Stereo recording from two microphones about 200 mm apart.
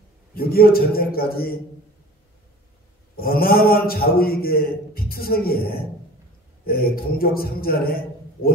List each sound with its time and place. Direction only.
0.3 s a man's voice: 50° left (ahead or behind)
3.2 s a man's voice: 50° left (ahead or behind)